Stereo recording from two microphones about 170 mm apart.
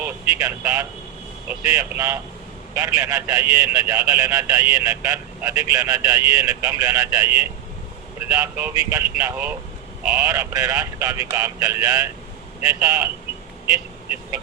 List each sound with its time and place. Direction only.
0.3 s a man's voice: 20° right (ahead or behind)
10.2 s a man's voice: 20° right (ahead or behind)